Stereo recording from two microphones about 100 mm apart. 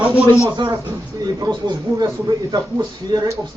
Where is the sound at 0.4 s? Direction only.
55° right (ahead or behind).